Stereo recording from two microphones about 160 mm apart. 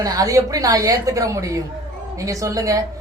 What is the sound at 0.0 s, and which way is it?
A woman's voice, 20° right (ahead or behind).